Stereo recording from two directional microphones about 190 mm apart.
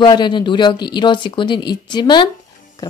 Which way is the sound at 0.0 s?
25° left (ahead or behind).